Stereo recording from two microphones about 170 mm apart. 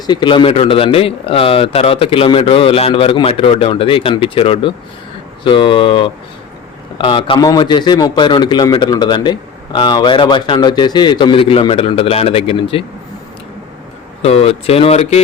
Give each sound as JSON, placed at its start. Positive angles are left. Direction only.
{"t": 0.1, "sound": "a man's voice", "side_deg": 25}
{"t": 14.2, "sound": "speech", "side_deg": 35}